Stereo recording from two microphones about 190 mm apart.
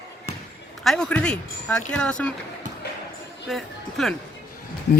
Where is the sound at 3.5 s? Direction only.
Centre (ahead or behind).